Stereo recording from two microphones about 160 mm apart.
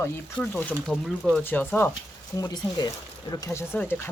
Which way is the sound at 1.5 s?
15° left (ahead or behind).